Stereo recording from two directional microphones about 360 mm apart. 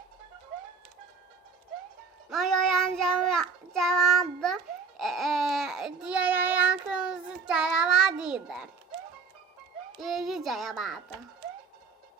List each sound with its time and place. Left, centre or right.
2.3 s child singing: centre
10.0 s a child's voice: centre